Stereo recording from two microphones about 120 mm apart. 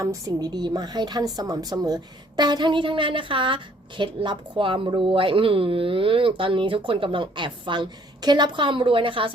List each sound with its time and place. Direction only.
0.0 s a woman's voice: 25° right (ahead or behind); by 9.3 s 45° right (ahead or behind)